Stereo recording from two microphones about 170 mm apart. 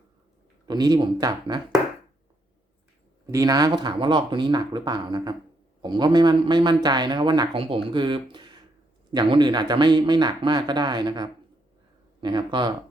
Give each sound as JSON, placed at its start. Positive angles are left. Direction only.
{"t": 0.7, "sound": "speech", "side_deg": -25}
{"t": 3.3, "sound": "speech", "side_deg": -20}